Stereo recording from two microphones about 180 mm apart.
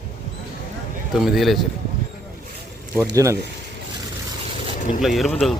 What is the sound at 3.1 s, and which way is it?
Speech, 15° right (ahead or behind).